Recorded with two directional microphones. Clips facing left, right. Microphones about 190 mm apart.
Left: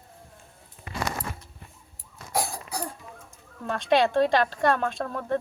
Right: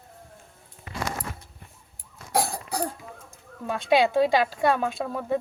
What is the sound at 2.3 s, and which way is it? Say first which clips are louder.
Cough: right 3 dB; 60° right (ahead or behind).